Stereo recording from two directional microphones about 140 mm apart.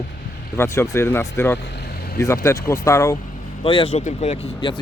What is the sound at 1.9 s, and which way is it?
Vehicle, 90° left.